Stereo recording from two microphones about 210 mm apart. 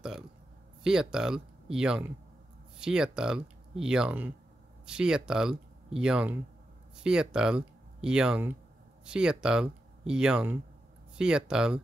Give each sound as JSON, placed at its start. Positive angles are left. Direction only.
{"t": 0.8, "sound": "speech", "side_deg": -5}